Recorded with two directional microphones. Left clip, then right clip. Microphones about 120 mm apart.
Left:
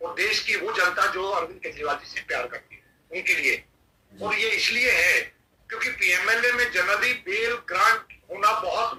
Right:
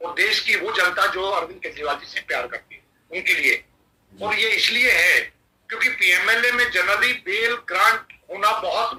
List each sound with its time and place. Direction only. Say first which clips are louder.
0.0 s speech: right 4 dB; 20° right (ahead or behind)